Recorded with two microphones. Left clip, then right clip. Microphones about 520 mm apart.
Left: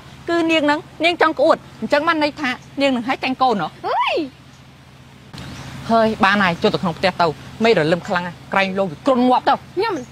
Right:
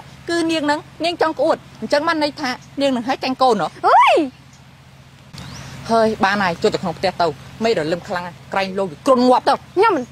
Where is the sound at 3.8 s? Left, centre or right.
Right.